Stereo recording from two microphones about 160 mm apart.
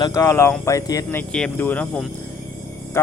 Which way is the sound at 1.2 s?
5° left (ahead or behind).